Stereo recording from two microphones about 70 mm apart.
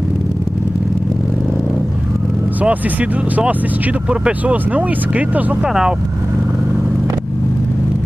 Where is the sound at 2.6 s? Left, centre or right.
Right.